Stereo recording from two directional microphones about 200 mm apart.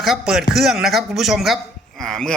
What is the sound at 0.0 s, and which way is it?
A man's voice, centre (ahead or behind).